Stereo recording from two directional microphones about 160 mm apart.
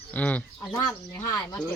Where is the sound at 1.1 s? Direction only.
20° left (ahead or behind).